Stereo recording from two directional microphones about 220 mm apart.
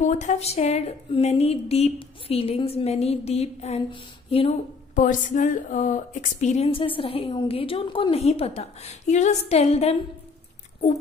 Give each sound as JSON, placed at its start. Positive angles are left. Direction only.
{"t": 0.0, "sound": "a woman's voice", "side_deg": 30}